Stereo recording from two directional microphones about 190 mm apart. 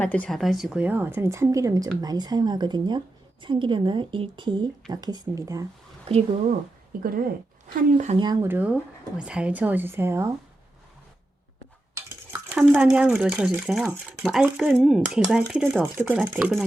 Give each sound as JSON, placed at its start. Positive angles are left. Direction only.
{"t": 0.0, "sound": "a woman's voice", "side_deg": 10}
{"t": 7.7, "sound": "speech", "side_deg": -45}
{"t": 8.1, "sound": "a woman's voice", "side_deg": -20}
{"t": 8.4, "sound": "speech", "side_deg": -10}
{"t": 12.3, "sound": "speech", "side_deg": -10}